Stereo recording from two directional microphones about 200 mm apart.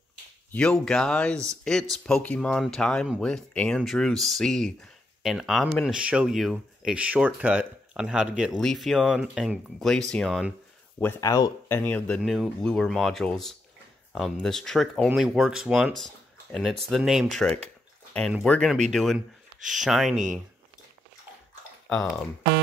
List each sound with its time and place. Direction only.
0.5 s speech: 5° left (ahead or behind)
11.0 s speech: 15° left (ahead or behind)
11.8 s speech: 5° left (ahead or behind)